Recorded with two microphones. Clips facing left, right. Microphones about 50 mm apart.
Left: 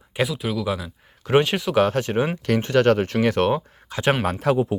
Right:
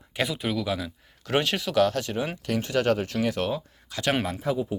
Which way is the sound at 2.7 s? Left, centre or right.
Left.